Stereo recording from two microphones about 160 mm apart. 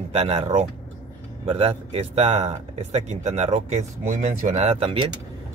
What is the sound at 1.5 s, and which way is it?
Speech, 40° right (ahead or behind).